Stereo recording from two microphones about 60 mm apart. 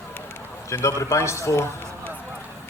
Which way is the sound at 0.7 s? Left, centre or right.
Left.